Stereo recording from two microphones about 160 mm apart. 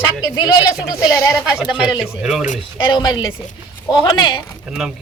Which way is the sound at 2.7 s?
30° left (ahead or behind).